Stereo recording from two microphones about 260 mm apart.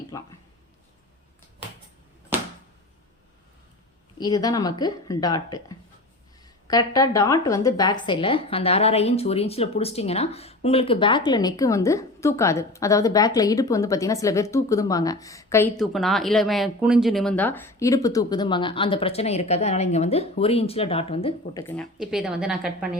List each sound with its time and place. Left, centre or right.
0.1 s a woman's voice: centre
4.2 s a woman's voice: centre
21.6 s speech: centre